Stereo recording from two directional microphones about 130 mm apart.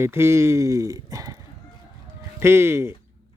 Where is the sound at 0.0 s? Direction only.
20° right (ahead or behind).